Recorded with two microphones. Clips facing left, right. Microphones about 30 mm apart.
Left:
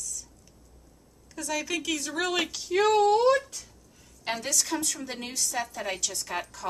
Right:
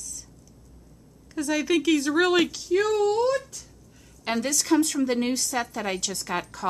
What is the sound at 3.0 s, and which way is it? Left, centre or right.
Speech, left.